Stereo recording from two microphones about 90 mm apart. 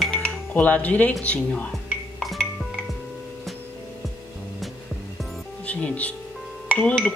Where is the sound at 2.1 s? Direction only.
Centre (ahead or behind).